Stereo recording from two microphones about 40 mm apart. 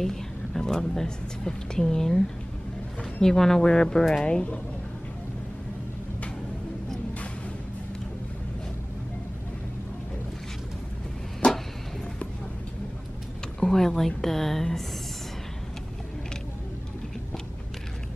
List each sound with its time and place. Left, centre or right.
0.0 s a woman's voice: centre
11.4 s a sound: left
13.6 s a woman's voice: centre